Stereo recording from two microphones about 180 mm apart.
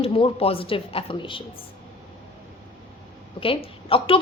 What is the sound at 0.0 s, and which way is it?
A woman's voice, 30° left (ahead or behind).